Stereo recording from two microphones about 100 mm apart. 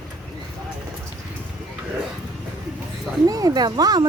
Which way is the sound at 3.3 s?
40° right (ahead or behind).